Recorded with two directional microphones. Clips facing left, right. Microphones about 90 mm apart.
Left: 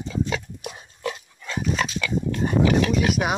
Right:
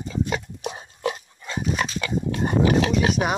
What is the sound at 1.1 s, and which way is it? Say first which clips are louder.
Dog: right 2 dB; 20° right (ahead or behind).